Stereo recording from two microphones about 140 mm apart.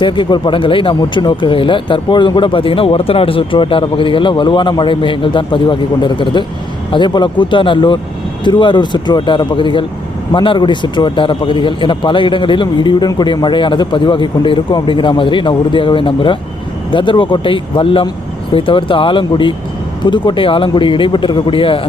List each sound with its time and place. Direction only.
0.0 s speech: 35° left (ahead or behind)